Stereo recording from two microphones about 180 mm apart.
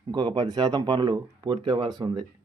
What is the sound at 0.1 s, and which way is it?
Speech, 25° right (ahead or behind).